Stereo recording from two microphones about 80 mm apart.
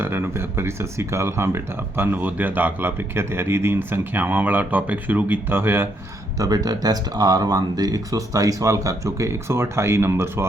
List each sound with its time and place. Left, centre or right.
0.0 s speech: right
6.4 s speech: right